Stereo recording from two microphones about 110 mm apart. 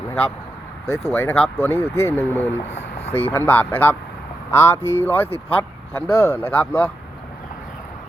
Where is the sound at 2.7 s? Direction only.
80° left.